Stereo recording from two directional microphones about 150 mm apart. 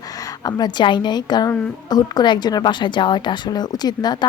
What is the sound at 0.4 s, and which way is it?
A woman's voice, 25° left (ahead or behind).